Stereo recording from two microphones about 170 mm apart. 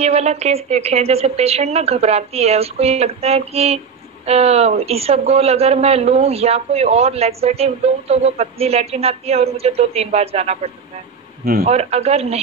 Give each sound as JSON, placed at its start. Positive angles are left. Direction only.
{"t": 0.0, "sound": "a man's voice", "side_deg": -40}